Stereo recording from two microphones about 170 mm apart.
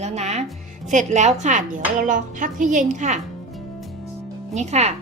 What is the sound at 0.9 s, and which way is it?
A woman's voice, 45° right (ahead or behind).